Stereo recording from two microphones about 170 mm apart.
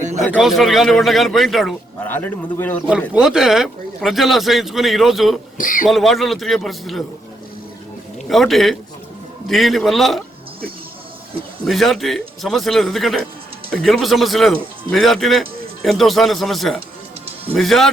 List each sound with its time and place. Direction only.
0.3 s a man's voice: centre (ahead or behind)
2.0 s speech: 10° left (ahead or behind)
3.1 s a man's voice: 5° right (ahead or behind)
5.5 s speech: 50° left (ahead or behind)
5.9 s a man's voice: centre (ahead or behind)
8.3 s a man's voice: centre (ahead or behind)
11.6 s a man's voice: centre (ahead or behind)